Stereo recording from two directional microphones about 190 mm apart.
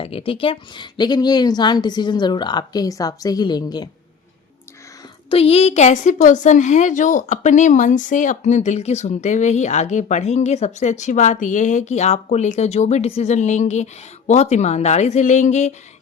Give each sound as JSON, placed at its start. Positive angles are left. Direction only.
{"t": 0.0, "sound": "a woman's voice", "side_deg": 30}
{"t": 5.3, "sound": "a woman's voice", "side_deg": 30}